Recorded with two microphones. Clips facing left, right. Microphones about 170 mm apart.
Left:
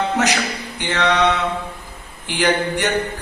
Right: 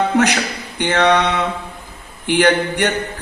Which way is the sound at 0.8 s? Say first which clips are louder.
Right 5 dB; 55° right (ahead or behind).